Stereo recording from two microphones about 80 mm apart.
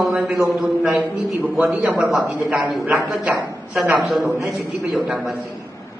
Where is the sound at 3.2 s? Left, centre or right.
Centre.